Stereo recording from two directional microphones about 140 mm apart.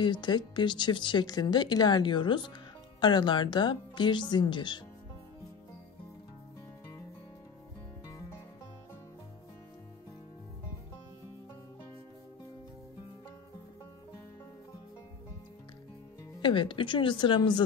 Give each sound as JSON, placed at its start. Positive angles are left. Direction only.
{"t": 0.0, "sound": "speech", "side_deg": 35}
{"t": 16.3, "sound": "speech", "side_deg": 35}